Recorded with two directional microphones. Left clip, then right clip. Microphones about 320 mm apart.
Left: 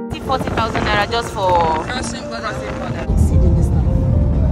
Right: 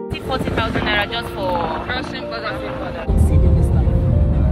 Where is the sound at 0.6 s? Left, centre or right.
Left.